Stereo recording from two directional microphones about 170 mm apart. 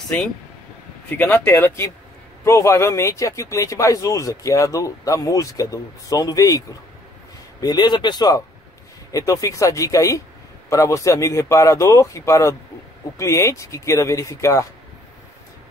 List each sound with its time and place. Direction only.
1.0 s speech: 10° left (ahead or behind)